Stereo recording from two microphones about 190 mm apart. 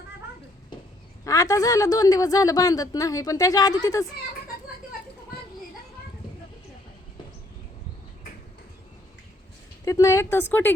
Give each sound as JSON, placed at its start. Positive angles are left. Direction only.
{"t": 1.2, "sound": "a woman's voice", "side_deg": 15}
{"t": 4.5, "sound": "a sound", "side_deg": 55}
{"t": 9.8, "sound": "a woman's voice", "side_deg": 15}